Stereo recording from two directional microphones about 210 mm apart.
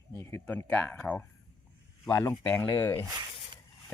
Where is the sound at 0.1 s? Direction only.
15° left (ahead or behind).